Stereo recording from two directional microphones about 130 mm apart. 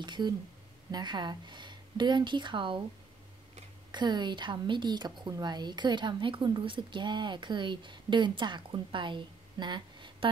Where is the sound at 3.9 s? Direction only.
35° right (ahead or behind).